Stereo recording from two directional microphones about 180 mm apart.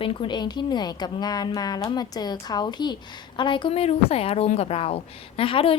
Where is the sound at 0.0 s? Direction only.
30° left (ahead or behind).